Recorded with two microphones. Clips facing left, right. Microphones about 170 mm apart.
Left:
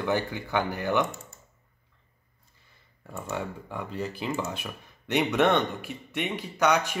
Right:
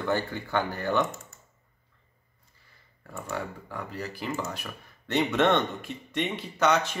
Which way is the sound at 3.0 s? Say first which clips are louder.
Left 1 dB; 5° left (ahead or behind).